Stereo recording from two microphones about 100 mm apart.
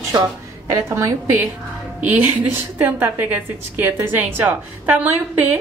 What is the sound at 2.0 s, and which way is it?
A woman's voice, 15° right (ahead or behind).